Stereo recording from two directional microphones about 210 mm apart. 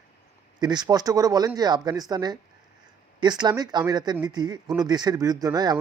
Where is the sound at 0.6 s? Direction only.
20° right (ahead or behind).